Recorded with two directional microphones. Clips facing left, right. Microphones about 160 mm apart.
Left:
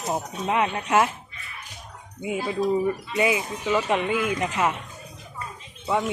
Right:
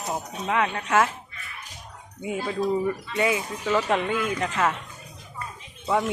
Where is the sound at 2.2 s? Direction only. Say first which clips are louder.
Left 1 dB; 10° left (ahead or behind).